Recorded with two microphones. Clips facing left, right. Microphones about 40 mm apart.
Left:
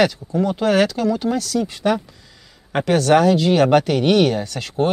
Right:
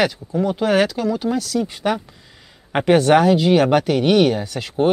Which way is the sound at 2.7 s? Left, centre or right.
Right.